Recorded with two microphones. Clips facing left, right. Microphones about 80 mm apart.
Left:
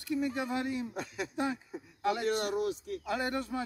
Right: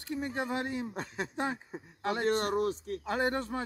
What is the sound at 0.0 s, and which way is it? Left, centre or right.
Speech, right.